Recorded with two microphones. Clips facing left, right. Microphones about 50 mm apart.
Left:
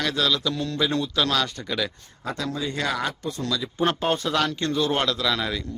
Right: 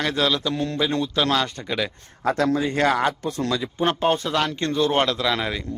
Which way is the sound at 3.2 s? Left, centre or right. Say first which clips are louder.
Right 4 dB; right.